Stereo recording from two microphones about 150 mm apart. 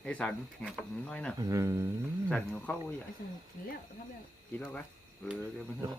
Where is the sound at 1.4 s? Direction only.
20° right (ahead or behind).